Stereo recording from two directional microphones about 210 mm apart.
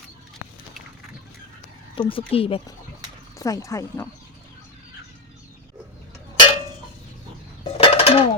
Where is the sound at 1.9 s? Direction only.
25° left (ahead or behind).